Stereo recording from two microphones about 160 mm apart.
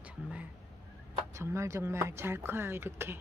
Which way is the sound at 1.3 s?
15° right (ahead or behind).